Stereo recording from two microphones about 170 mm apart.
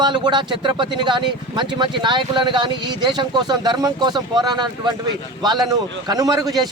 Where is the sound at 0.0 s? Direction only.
25° right (ahead or behind).